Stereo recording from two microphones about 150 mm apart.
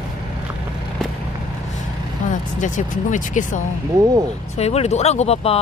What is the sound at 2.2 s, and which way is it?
Speech, 55° left (ahead or behind).